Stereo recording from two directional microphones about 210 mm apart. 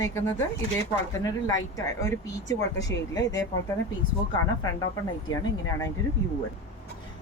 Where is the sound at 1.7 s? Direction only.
15° left (ahead or behind).